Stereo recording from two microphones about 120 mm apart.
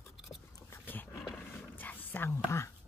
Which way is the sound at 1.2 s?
15° left (ahead or behind).